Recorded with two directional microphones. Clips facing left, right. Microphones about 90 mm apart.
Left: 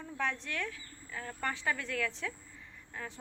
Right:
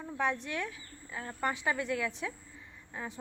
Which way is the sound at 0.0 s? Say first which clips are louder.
Right 3 dB; 15° right (ahead or behind).